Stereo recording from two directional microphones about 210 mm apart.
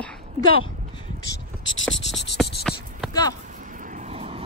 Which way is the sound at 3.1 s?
15° left (ahead or behind).